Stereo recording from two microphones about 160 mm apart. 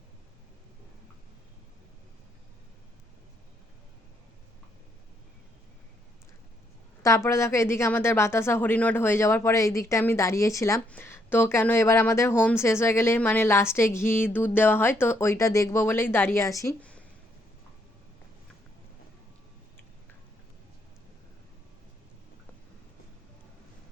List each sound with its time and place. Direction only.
7.0 s speech: 20° left (ahead or behind)